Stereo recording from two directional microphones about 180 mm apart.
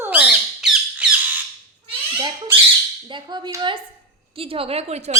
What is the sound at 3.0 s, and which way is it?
A woman's voice, 25° right (ahead or behind).